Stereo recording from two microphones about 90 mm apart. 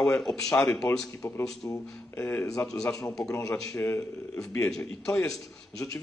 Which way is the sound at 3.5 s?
25° left (ahead or behind).